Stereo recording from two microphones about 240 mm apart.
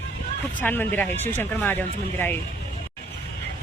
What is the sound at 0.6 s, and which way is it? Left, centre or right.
Speech, centre.